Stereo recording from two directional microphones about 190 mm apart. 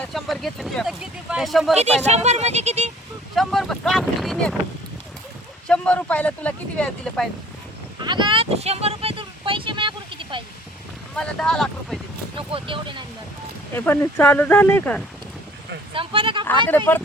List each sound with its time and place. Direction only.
0.1 s speech: centre (ahead or behind)
2.0 s speech: 35° right (ahead or behind)
3.3 s speech: centre (ahead or behind)
5.6 s speech: 5° left (ahead or behind)
7.9 s a sound: 25° right (ahead or behind)
11.1 s speech: 5° left (ahead or behind)
12.5 s speech: 30° right (ahead or behind)
13.7 s speech: 10° left (ahead or behind)
15.9 s speech: 30° right (ahead or behind)
16.6 s speech: 10° left (ahead or behind)